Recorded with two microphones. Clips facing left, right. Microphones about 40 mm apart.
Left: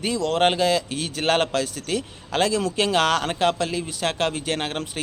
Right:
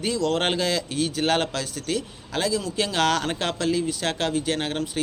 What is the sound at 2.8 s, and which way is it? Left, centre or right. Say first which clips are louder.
Speech: left 2 dB; left.